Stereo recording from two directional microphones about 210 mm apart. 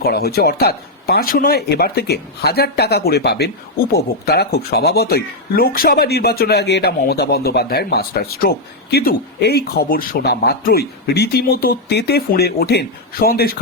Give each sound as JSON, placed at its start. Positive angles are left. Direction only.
{"t": 0.0, "sound": "speech", "side_deg": 45}